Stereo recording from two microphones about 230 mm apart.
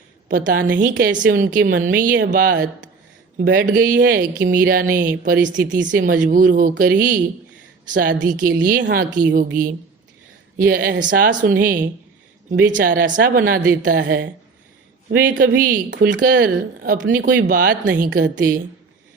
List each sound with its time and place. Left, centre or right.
0.3 s a woman's voice: right
15.9 s speech: right
16.2 s a woman's voice: right